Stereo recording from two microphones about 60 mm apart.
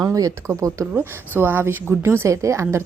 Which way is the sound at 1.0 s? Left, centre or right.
Right.